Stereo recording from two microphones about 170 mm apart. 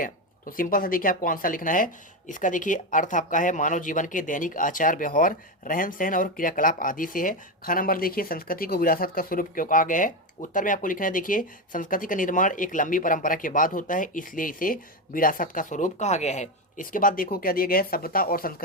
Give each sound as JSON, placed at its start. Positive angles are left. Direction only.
{"t": 0.0, "sound": "speech", "side_deg": 55}